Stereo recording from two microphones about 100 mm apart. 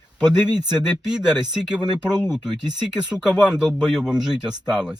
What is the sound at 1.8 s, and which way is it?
Speech, 45° right (ahead or behind).